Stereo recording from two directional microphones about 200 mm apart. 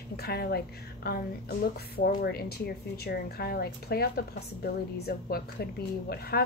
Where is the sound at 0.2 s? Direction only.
50° left (ahead or behind).